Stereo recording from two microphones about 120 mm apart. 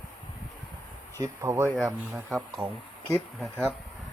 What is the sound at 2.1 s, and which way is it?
Speech, 5° right (ahead or behind).